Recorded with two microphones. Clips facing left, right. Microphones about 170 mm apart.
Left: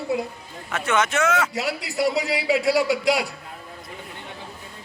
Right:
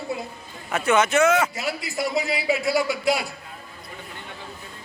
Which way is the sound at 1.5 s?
75° left (ahead or behind).